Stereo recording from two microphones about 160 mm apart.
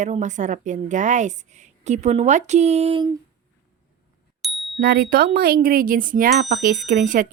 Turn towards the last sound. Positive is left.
turn(degrees=-55)  # may be behind; listen again after turning